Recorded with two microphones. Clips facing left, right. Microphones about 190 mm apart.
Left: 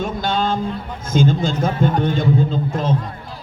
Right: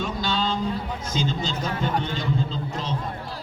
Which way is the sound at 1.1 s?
50° left (ahead or behind).